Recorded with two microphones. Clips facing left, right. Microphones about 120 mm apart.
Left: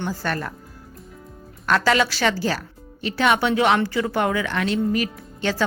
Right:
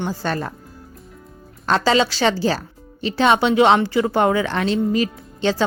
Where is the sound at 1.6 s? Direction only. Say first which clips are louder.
Right 2 dB; 25° right (ahead or behind).